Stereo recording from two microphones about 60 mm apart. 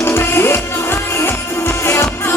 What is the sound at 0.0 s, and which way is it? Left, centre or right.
Music, left.